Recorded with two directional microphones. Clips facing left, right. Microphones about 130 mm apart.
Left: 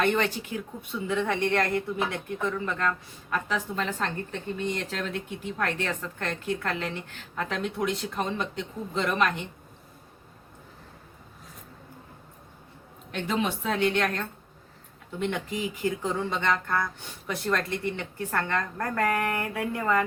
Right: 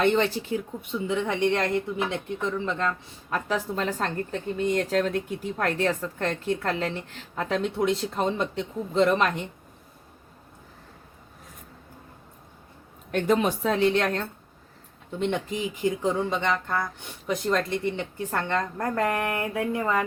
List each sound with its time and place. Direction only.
0.0 s a woman's voice: 25° right (ahead or behind)
13.1 s a woman's voice: 50° right (ahead or behind); by 14.3 s 30° right (ahead or behind)
15.3 s speech: 25° right (ahead or behind)